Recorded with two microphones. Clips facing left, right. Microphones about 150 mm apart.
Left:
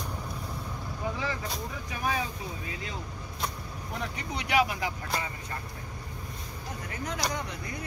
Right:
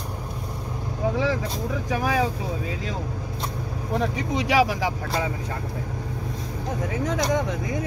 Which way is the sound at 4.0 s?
90° right.